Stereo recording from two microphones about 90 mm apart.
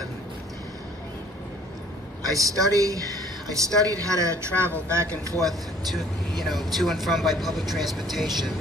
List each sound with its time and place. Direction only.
2.3 s speech: 40° right (ahead or behind)
5.4 s speech: centre (ahead or behind)